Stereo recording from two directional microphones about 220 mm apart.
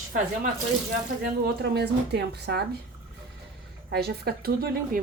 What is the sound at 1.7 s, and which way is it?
Speech, 50° right (ahead or behind).